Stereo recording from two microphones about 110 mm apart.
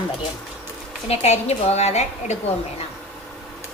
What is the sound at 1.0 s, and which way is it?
Speech, 70° left (ahead or behind).